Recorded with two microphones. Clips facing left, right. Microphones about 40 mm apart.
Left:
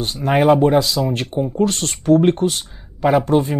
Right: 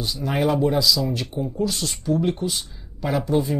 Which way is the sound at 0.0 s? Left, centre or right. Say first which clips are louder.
Left 7 dB; left.